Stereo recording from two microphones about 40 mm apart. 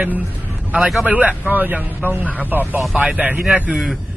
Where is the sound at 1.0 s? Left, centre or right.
Right.